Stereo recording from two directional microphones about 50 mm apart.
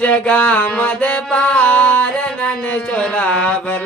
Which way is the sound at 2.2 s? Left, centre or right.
Left.